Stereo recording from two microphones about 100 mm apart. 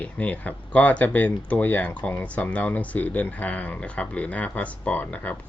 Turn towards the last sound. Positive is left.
turn(degrees=20)  # may be behind; listen again after turning